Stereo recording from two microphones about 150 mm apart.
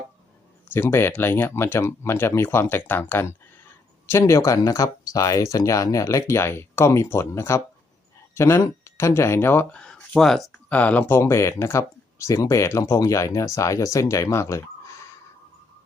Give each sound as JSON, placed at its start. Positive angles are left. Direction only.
{"t": 0.7, "sound": "speech", "side_deg": 15}